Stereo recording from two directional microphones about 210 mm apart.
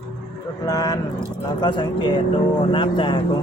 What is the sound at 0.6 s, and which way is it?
Speech, 15° left (ahead or behind).